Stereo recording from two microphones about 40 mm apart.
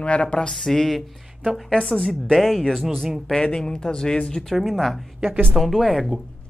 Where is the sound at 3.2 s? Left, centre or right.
Centre.